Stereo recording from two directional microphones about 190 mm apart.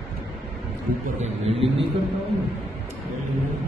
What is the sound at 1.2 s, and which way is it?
Speech, 35° right (ahead or behind).